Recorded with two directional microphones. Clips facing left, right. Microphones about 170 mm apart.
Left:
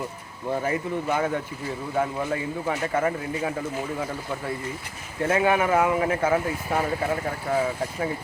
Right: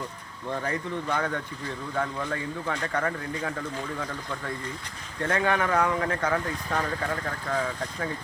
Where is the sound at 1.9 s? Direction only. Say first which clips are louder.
Left 4 dB; 25° left (ahead or behind).